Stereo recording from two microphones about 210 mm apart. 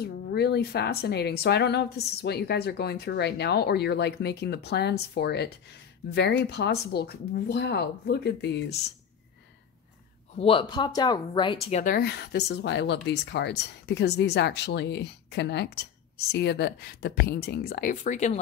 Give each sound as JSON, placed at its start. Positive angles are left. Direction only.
{"t": 0.0, "sound": "speech", "side_deg": 50}
{"t": 10.3, "sound": "speech", "side_deg": 25}
{"t": 11.8, "sound": "speech", "side_deg": 45}